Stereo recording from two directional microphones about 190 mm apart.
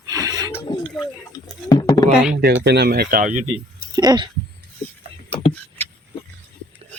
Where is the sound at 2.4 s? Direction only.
60° right (ahead or behind).